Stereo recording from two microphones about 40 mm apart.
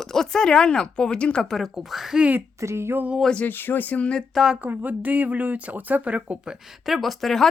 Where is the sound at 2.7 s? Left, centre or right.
Right.